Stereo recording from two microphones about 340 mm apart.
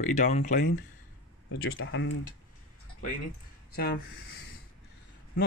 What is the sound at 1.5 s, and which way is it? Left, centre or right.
Speech, left.